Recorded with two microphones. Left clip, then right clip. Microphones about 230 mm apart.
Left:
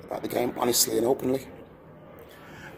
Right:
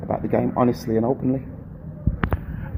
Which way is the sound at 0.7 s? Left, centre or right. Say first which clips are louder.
Right 1 dB; left.